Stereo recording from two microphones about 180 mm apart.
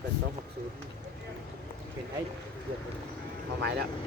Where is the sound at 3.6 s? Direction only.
65° right (ahead or behind).